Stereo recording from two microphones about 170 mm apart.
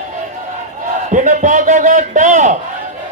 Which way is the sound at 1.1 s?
50° right (ahead or behind).